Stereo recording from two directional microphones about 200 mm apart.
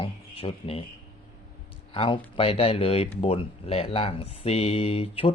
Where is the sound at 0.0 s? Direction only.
25° left (ahead or behind).